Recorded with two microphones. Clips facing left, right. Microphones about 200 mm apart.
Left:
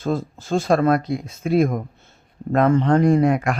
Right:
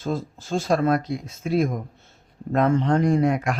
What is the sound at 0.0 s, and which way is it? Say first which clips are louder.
Speech: left 4 dB; 55° left (ahead or behind).